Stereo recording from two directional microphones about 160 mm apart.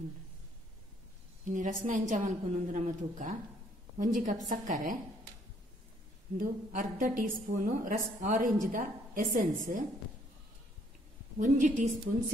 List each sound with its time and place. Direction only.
1.4 s a woman's voice: 55° right (ahead or behind)
6.3 s a woman's voice: 55° right (ahead or behind)
11.3 s a woman's voice: 55° right (ahead or behind)